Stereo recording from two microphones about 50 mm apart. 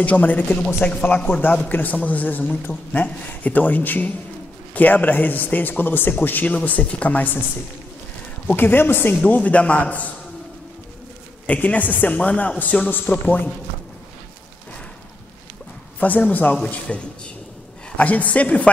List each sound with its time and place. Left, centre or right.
0.0 s a man's voice: left
8.5 s a man's voice: left
9.2 s a man's voice: left
11.4 s a man's voice: left
16.0 s a man's voice: left
17.9 s a man's voice: left